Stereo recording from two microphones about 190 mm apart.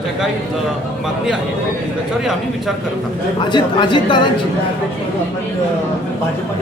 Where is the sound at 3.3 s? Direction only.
25° left (ahead or behind).